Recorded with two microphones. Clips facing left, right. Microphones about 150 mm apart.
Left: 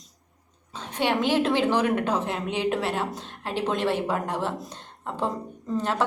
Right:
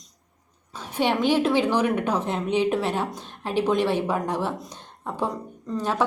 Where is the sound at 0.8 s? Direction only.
10° right (ahead or behind).